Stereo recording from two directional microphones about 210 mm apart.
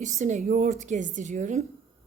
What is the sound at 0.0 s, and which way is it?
A woman's voice, 35° right (ahead or behind).